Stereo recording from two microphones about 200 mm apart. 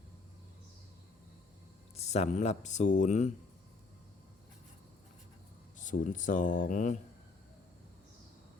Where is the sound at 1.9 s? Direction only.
35° left (ahead or behind).